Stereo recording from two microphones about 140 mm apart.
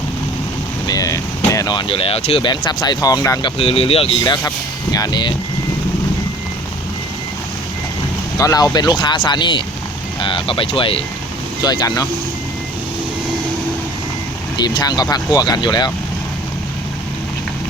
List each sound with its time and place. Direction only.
0.9 s speech: 25° left (ahead or behind)
1.9 s speech: 40° left (ahead or behind); by 3.5 s 25° left (ahead or behind)
3.6 s speech: 45° left (ahead or behind)
4.2 s speech: 25° left (ahead or behind)
8.4 s speech: 25° left (ahead or behind)
11.6 s speech: 30° left (ahead or behind)
14.6 s speech: 30° left (ahead or behind)